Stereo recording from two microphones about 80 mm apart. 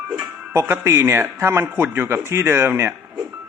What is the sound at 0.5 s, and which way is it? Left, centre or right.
Speech, right.